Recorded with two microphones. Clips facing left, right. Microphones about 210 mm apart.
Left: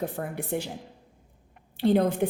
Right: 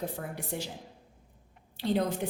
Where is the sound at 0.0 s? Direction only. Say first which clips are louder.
Left 5 dB; 55° left (ahead or behind).